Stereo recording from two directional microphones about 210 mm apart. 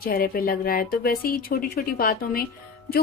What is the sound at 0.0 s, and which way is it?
Speech, 45° left (ahead or behind).